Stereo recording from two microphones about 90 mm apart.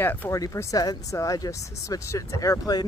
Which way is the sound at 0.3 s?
35° left (ahead or behind).